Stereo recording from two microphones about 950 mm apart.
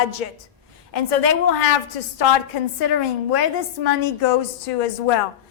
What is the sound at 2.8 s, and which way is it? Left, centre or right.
Speech, left.